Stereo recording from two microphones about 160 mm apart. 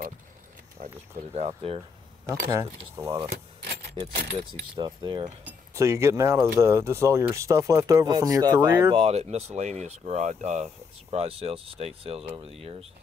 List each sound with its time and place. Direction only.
0.8 s a sound: 55° right (ahead or behind)
1.3 s speech: 40° right (ahead or behind)
2.2 s speech: 20° right (ahead or behind)
4.0 s speech: 35° right (ahead or behind)
5.8 s speech: 20° right (ahead or behind)
8.9 s speech: 40° right (ahead or behind)